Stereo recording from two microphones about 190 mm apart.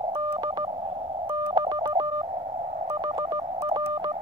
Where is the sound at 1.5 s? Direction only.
25° right (ahead or behind).